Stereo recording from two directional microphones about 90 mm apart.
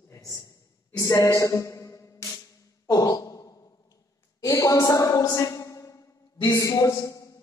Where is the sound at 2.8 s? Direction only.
40° left (ahead or behind).